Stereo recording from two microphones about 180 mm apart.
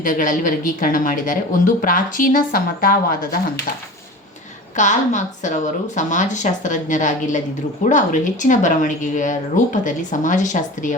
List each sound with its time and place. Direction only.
0.0 s speech: 50° left (ahead or behind)
4.8 s speech: 45° left (ahead or behind)